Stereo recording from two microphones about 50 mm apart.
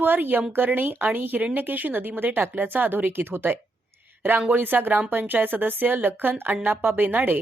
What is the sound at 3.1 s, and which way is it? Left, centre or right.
Speech, right.